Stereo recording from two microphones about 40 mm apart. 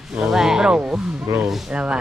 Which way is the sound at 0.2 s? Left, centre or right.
Centre.